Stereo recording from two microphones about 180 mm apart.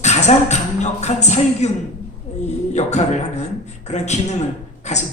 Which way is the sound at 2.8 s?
40° left (ahead or behind).